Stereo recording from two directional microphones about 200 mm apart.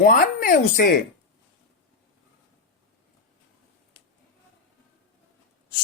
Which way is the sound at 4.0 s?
25° left (ahead or behind).